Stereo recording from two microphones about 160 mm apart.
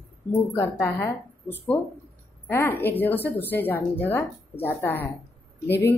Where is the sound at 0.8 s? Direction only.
15° left (ahead or behind).